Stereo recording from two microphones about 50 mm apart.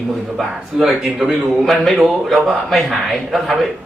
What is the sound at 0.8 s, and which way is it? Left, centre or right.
Speech, centre.